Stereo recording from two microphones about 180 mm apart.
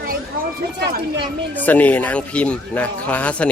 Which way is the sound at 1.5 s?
10° left (ahead or behind).